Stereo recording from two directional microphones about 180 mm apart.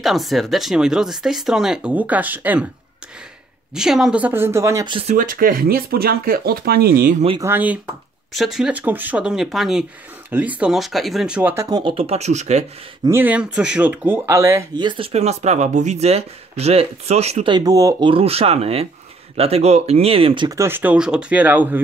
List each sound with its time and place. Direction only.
0.0 s speech: centre (ahead or behind)
3.7 s speech: 5° right (ahead or behind)
5.1 s speech: 50° right (ahead or behind)
7.3 s speech: 10° right (ahead or behind)
11.9 s speech: 35° right (ahead or behind)
13.0 s speech: 10° right (ahead or behind)
14.9 s speech: 30° right (ahead or behind)
18.1 s speech: 35° right (ahead or behind); by 21.8 s 10° right (ahead or behind)